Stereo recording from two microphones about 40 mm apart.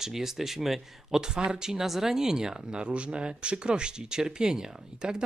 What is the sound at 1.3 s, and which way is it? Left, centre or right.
Speech, centre.